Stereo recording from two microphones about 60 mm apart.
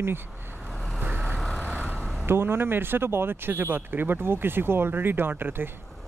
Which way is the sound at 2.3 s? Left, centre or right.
Right.